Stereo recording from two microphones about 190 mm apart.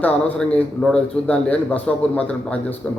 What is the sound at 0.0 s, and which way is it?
A man's voice, 5° left (ahead or behind).